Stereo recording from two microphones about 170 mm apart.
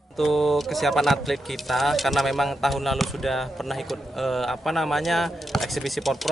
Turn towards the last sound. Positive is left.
turn(degrees=0)  # may be behind; listen again after turning